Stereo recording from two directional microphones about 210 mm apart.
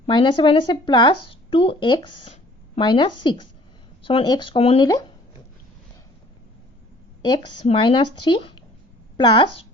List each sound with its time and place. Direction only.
0.0 s speech: 20° left (ahead or behind)
7.2 s speech: 20° left (ahead or behind)